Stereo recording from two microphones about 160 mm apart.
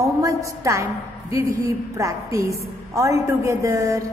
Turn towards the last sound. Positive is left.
turn(degrees=-20)  # may be behind; listen again after turning